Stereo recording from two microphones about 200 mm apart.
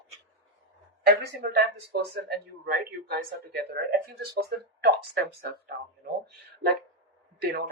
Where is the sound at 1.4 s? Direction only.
50° right (ahead or behind).